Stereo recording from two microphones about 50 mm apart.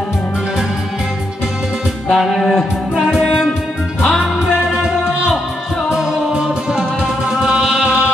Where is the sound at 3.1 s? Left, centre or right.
Centre.